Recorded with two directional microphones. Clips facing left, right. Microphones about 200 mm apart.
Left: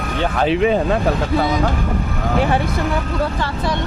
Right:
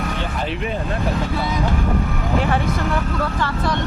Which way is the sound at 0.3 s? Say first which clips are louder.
Left 13 dB; 90° left.